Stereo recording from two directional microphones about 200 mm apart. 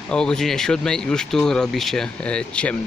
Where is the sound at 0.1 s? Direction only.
5° left (ahead or behind).